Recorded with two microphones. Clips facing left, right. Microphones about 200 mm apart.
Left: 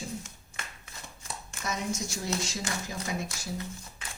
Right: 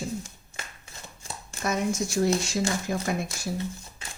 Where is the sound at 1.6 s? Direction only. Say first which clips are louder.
Right 7 dB; 55° right (ahead or behind).